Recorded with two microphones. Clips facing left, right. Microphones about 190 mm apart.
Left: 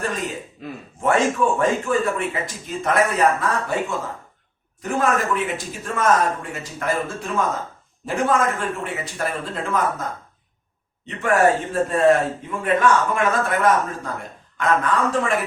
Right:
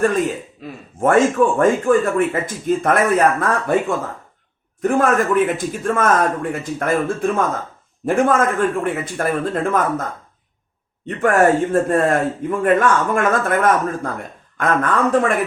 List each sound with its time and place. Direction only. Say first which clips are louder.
0.6 s speech: even; centre (ahead or behind)
0.9 s speech: right 5 dB; 50° right (ahead or behind)
11.0 s speech: right 3 dB; 50° right (ahead or behind)